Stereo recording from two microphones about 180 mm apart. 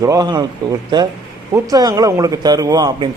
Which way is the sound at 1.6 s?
20° right (ahead or behind).